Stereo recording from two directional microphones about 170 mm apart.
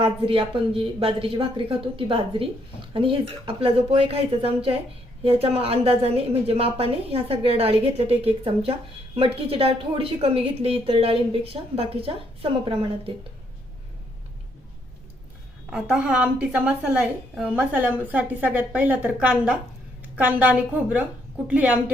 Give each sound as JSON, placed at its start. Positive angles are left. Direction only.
{"t": 0.0, "sound": "a woman's voice", "side_deg": -30}
{"t": 15.7, "sound": "a woman's voice", "side_deg": -5}